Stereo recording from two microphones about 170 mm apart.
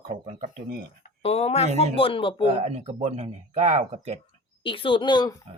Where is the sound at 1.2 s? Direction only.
35° left (ahead or behind).